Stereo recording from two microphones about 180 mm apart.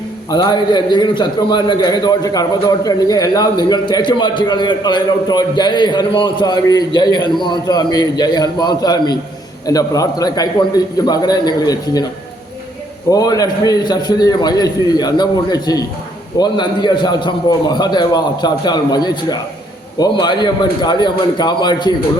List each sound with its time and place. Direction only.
0.3 s a man's voice: 25° left (ahead or behind)
13.1 s a man's voice: 20° left (ahead or behind)